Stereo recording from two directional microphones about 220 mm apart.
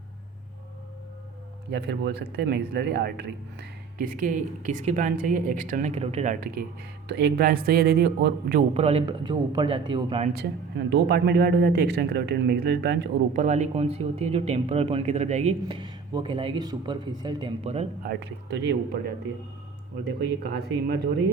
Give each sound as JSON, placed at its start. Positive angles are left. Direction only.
{"t": 1.7, "sound": "speech", "side_deg": -50}
{"t": 8.7, "sound": "speech", "side_deg": -30}
{"t": 10.3, "sound": "speech", "side_deg": -50}
{"t": 13.4, "sound": "speech", "side_deg": -35}
{"t": 18.0, "sound": "speech", "side_deg": -50}